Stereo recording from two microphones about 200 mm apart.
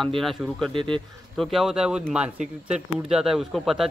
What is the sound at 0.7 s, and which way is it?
Speech, 25° right (ahead or behind).